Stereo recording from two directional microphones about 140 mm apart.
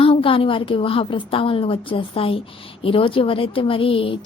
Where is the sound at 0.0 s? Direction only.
40° left (ahead or behind).